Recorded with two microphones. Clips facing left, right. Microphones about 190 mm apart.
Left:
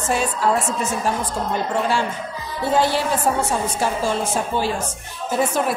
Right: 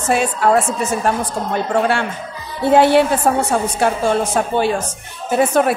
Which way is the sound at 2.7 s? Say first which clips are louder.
Right 8 dB; 65° right (ahead or behind).